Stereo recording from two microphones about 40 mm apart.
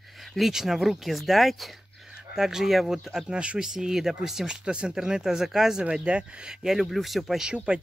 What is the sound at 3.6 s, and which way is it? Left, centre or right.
Speech, centre.